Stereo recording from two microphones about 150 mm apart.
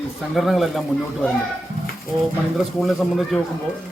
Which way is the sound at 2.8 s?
Centre (ahead or behind).